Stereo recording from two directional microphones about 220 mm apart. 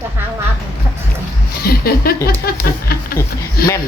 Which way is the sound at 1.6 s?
45° left (ahead or behind).